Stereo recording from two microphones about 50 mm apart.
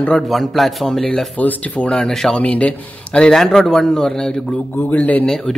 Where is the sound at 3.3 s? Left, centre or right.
Centre.